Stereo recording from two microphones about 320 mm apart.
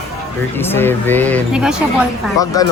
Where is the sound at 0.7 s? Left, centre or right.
Centre.